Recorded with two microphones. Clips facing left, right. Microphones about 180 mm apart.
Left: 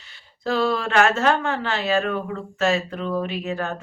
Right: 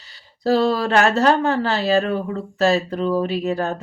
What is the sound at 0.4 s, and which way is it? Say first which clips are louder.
Speech: right 5 dB; 40° right (ahead or behind).